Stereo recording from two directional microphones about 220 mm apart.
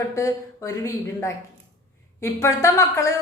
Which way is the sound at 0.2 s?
15° left (ahead or behind).